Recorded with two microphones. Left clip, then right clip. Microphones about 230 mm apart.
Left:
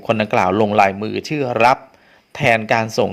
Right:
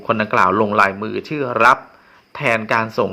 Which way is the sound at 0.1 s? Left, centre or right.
Left.